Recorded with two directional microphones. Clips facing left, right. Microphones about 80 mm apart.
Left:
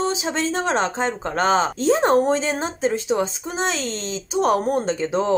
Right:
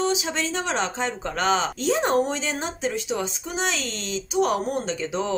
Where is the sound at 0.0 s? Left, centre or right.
Left.